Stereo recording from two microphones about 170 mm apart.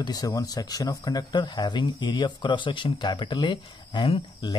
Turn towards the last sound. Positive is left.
turn(degrees=30)  # may be behind; listen again after turning